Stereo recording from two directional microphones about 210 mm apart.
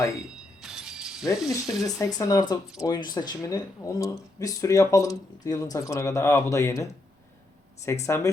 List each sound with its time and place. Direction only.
0.0 s speech: 15° left (ahead or behind)
0.3 s mechanisms: centre (ahead or behind)
1.4 s speech: centre (ahead or behind)
2.0 s speech: 15° left (ahead or behind)
8.0 s speech: 15° left (ahead or behind)